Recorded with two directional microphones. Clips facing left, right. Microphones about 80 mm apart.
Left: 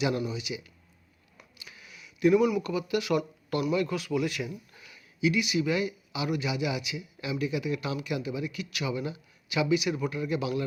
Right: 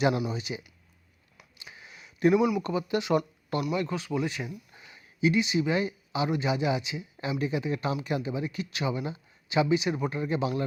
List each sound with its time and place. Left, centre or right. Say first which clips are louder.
0.3 s speech: right 1 dB; right
1.5 s a sound: right 2 dB; right
2.4 s speech: even; centre
2.6 s speech: right 1 dB; right